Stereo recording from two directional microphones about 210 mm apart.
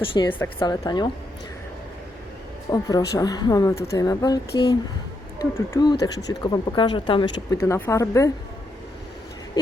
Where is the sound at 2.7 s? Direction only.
20° left (ahead or behind).